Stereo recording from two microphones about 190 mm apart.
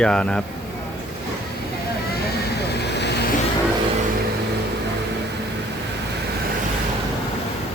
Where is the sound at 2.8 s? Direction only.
60° left (ahead or behind).